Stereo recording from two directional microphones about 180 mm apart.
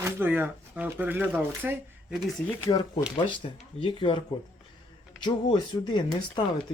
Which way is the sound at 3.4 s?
35° left (ahead or behind).